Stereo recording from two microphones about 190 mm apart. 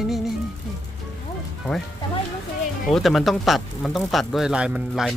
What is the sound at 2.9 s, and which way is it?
Speech, centre (ahead or behind).